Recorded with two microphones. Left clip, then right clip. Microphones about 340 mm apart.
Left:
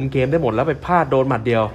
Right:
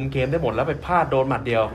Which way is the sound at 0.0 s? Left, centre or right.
Left.